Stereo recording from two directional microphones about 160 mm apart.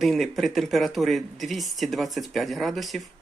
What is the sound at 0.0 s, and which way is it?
Speech, centre (ahead or behind).